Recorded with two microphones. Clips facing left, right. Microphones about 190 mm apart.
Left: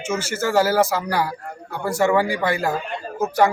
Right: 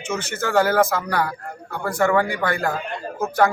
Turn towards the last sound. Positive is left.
turn(degrees=10)  # may be behind; listen again after turning